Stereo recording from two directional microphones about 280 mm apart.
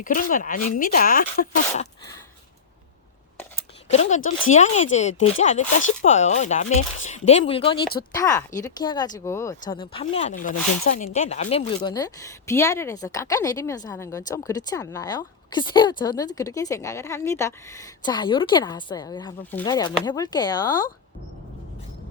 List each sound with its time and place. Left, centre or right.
0.0 s speech: left
3.9 s speech: left